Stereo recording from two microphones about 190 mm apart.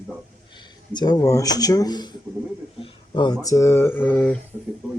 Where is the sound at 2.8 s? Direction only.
25° left (ahead or behind).